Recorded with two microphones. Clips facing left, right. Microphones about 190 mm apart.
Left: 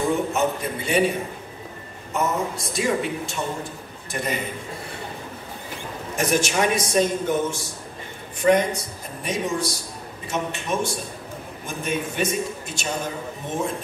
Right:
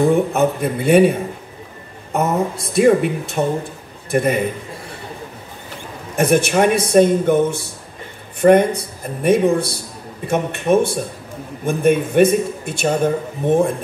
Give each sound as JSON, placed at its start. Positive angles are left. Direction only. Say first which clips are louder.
{"t": 0.0, "sound": "a man's voice", "louder": "right 7 dB", "side_deg": -60}
{"t": 2.1, "sound": "a man's voice", "louder": "right 6 dB", "side_deg": -60}
{"t": 6.1, "sound": "a man's voice", "louder": "right 7 dB", "side_deg": -60}